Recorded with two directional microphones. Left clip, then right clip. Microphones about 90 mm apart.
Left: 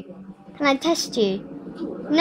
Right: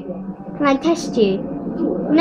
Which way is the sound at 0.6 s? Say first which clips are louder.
Right 3 dB; 75° left (ahead or behind).